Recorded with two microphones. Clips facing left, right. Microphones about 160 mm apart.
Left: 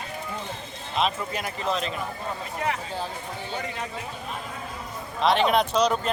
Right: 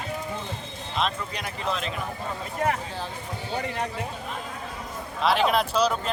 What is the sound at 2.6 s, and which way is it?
Speech, 45° right (ahead or behind).